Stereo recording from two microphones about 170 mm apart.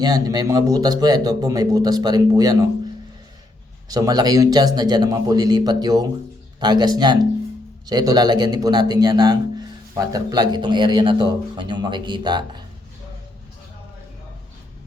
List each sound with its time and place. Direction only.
0.0 s speech: 25° right (ahead or behind)
3.8 s speech: 20° right (ahead or behind)